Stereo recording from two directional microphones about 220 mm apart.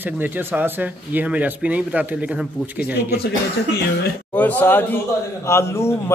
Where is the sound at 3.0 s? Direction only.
45° left (ahead or behind).